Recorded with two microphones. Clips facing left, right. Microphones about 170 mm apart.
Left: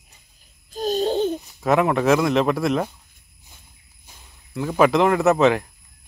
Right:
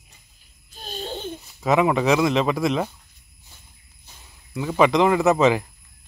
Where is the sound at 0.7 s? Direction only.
40° left (ahead or behind).